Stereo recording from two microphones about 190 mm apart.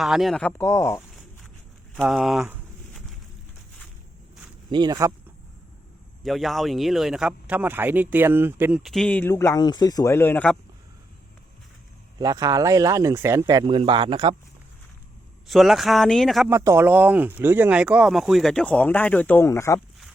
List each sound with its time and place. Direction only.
0.0 s speech: centre (ahead or behind); by 1.0 s 15° left (ahead or behind)
2.0 s a sound: centre (ahead or behind)
4.7 s speech: 20° right (ahead or behind)
6.2 s speech: centre (ahead or behind)
12.2 s speech: 20° right (ahead or behind)
15.4 s speech: centre (ahead or behind)
16.5 s speech: 15° right (ahead or behind); by 19.8 s 15° left (ahead or behind)